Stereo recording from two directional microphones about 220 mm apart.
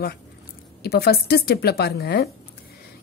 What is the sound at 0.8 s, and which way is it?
A woman's voice, 45° left (ahead or behind).